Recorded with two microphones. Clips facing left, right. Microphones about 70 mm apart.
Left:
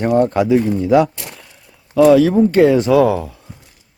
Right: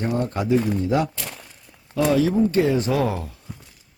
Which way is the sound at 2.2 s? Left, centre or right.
Left.